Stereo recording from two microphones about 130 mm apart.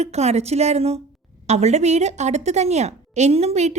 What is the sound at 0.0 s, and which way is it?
A woman's voice, 55° right (ahead or behind).